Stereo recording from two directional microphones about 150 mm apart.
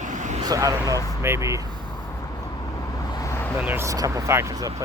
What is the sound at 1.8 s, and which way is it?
Vehicle, 30° left (ahead or behind).